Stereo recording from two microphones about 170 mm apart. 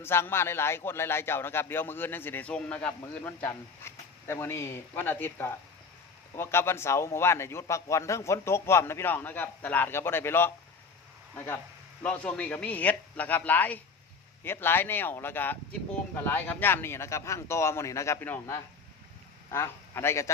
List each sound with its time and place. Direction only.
0.0 s speech: 15° left (ahead or behind)
12.0 s a man's voice: 10° left (ahead or behind)